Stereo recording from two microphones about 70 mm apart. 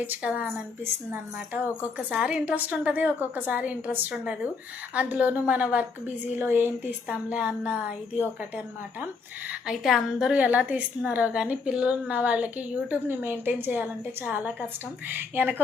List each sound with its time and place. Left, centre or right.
0.2 s a woman's voice: centre
2.0 s a woman's voice: centre
6.4 s a woman's voice: right
7.1 s a woman's voice: centre
10.3 s a woman's voice: right
13.1 s a woman's voice: right